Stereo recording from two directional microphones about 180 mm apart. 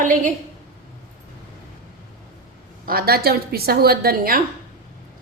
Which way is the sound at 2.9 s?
55° right (ahead or behind).